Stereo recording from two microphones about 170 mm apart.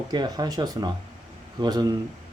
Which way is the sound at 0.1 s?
25° right (ahead or behind).